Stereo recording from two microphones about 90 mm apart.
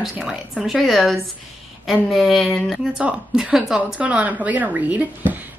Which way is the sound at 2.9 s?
10° right (ahead or behind).